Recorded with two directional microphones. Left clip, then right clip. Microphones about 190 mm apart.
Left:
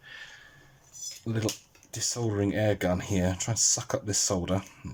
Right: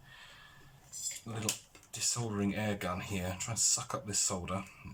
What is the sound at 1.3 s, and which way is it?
Speech, 40° left (ahead or behind).